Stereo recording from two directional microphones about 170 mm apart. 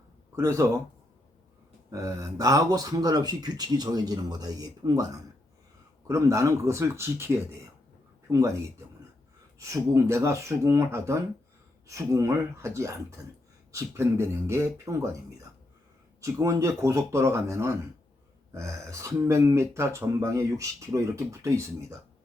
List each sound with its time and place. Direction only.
0.3 s speech: 15° right (ahead or behind)
1.9 s speech: 20° right (ahead or behind)
9.6 s speech: 20° right (ahead or behind)